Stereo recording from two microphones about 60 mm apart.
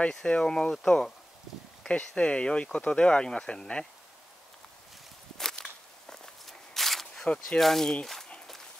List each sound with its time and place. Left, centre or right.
0.0 s speech: centre
5.4 s walk: centre
7.2 s speech: centre